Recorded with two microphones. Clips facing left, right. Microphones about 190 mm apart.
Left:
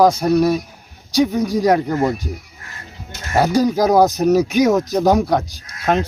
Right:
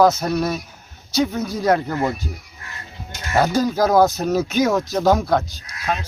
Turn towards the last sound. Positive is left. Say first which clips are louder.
# left 7 dB
turn(degrees=60)  # may be behind; listen again after turning